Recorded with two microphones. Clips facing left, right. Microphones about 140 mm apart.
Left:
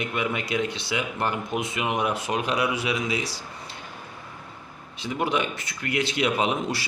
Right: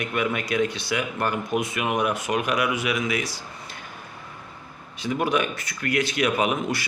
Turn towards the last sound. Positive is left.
turn(degrees=25)  # may be behind; listen again after turning